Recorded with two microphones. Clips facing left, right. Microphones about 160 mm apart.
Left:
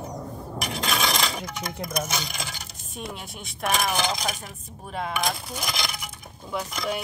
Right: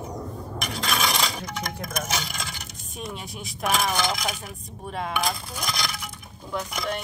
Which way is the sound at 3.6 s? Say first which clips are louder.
Right 1 dB; centre (ahead or behind).